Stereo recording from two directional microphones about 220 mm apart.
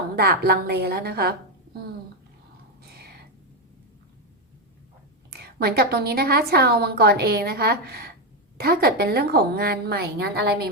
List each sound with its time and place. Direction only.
0.2 s a woman's voice: 45° right (ahead or behind)
2.8 s a sound: 45° right (ahead or behind)
5.3 s a woman's voice: 45° right (ahead or behind)